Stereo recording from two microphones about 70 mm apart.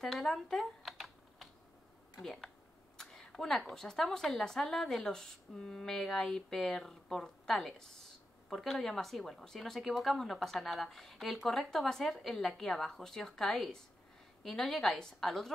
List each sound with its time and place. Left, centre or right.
0.0 s computer keyboard: centre
2.2 s a woman's voice: centre